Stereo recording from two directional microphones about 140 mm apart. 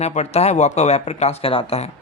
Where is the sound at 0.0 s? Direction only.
50° left (ahead or behind).